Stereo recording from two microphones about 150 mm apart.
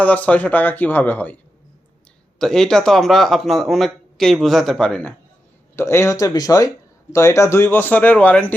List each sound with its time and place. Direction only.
0.0 s speech: 10° left (ahead or behind)
2.4 s a man's voice: 5° left (ahead or behind)
5.7 s speech: 15° left (ahead or behind)